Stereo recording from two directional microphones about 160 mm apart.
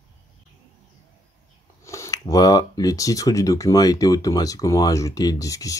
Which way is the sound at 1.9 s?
20° left (ahead or behind).